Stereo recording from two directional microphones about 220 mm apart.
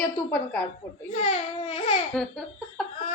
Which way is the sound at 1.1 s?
30° left (ahead or behind).